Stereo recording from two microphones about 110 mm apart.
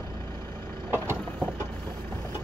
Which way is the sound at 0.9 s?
20° right (ahead or behind).